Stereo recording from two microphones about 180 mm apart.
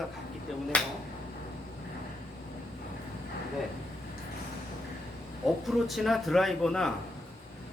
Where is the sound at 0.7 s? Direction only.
5° left (ahead or behind).